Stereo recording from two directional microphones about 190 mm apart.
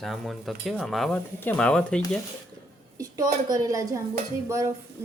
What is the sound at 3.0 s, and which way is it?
A woman's voice, 20° right (ahead or behind).